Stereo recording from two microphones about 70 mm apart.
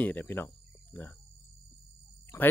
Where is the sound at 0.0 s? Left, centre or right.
Left.